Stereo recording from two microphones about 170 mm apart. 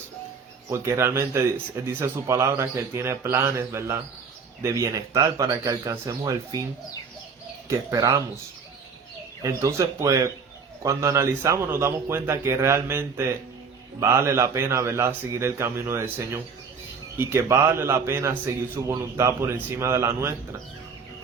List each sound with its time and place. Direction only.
0.7 s a man's voice: 15° right (ahead or behind)
7.7 s speech: 20° right (ahead or behind)
9.4 s a man's voice: 15° right (ahead or behind)